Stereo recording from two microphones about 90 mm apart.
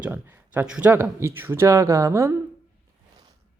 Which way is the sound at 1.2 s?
30° right (ahead or behind).